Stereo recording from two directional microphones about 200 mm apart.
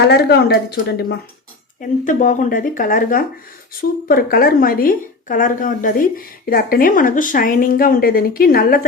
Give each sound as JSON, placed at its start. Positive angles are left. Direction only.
{"t": 0.0, "sound": "a woman's voice", "side_deg": 55}
{"t": 2.0, "sound": "a woman's voice", "side_deg": 40}